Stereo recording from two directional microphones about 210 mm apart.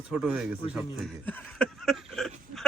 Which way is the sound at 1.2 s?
5° left (ahead or behind).